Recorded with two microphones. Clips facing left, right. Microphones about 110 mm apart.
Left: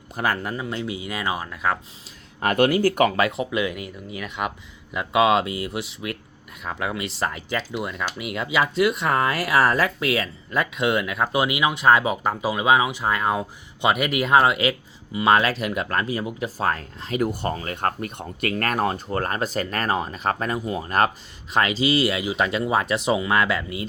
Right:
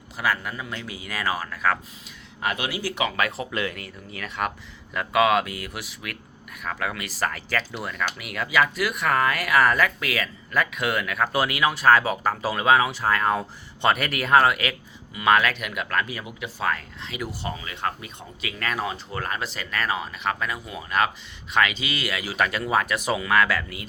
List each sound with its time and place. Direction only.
0.2 s speech: 40° left (ahead or behind)
0.5 s speech: 25° left (ahead or behind)
2.4 s speech: 50° left (ahead or behind)
3.2 s speech: 20° left (ahead or behind)